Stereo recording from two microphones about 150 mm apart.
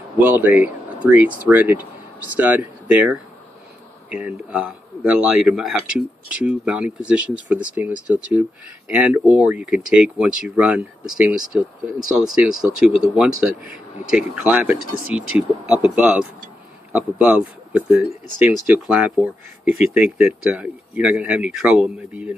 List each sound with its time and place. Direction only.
0.2 s a man's voice: 15° right (ahead or behind)